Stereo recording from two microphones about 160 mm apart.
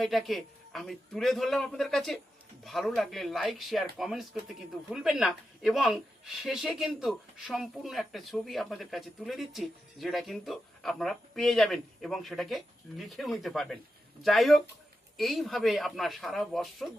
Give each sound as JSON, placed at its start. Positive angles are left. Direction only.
{"t": 0.0, "sound": "a woman's voice", "side_deg": 0}